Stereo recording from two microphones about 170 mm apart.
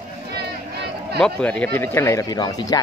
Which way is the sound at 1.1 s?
5° left (ahead or behind).